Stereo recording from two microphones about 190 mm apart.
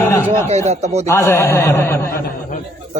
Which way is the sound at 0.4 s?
35° right (ahead or behind).